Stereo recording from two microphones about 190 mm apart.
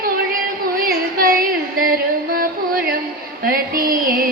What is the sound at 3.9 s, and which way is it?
Music, 50° right (ahead or behind).